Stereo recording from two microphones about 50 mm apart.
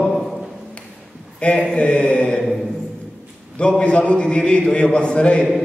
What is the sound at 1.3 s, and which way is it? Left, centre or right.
A man's voice, left.